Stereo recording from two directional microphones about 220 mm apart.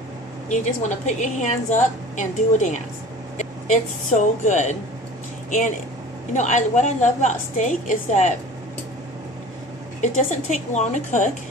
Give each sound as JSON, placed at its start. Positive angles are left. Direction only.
{"t": 0.5, "sound": "a woman's voice", "side_deg": 30}
{"t": 6.3, "sound": "a woman's voice", "side_deg": 35}
{"t": 10.0, "sound": "a woman's voice", "side_deg": 35}